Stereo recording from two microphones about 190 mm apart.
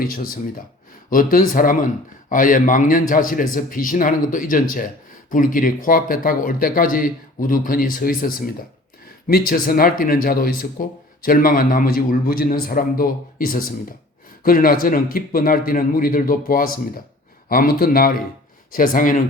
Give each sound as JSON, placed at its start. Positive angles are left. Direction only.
{"t": 0.0, "sound": "speech", "side_deg": 50}